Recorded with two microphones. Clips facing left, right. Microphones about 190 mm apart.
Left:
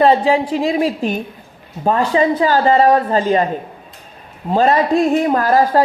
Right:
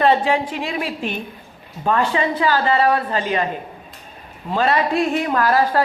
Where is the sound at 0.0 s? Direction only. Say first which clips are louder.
Left 4 dB; 35° left (ahead or behind).